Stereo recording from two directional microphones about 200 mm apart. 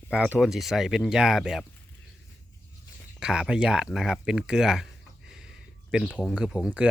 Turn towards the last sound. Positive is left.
turn(degrees=-5)  # may be behind; listen again after turning